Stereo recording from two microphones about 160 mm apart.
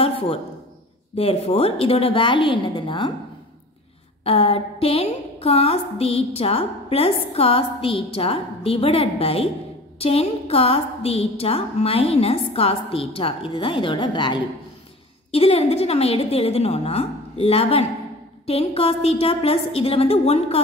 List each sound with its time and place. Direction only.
0.0 s a sound: 35° left (ahead or behind)
1.1 s a woman's voice: 40° left (ahead or behind)
4.2 s a woman's voice: 35° left (ahead or behind)